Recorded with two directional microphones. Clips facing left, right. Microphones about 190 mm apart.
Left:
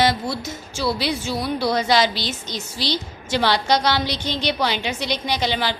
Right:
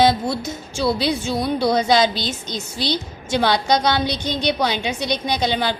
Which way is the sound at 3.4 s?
15° right (ahead or behind).